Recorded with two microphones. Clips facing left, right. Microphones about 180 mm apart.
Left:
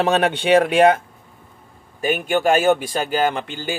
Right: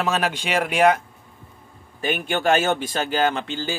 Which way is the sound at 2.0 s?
40° left (ahead or behind).